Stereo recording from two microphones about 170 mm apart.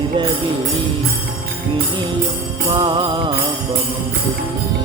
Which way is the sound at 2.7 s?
25° right (ahead or behind).